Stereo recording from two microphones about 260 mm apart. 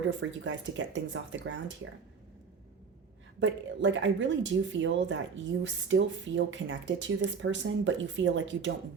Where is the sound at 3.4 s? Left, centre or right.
Right.